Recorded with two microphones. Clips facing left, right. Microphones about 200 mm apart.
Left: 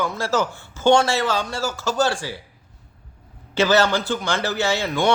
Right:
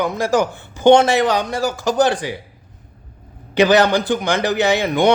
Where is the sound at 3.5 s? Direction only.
15° right (ahead or behind).